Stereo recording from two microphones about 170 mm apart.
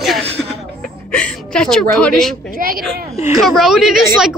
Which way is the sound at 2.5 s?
55° right (ahead or behind).